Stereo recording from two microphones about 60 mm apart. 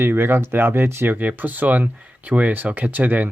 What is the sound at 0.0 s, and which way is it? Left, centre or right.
Speech, right.